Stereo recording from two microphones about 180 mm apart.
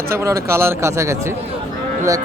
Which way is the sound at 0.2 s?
15° right (ahead or behind).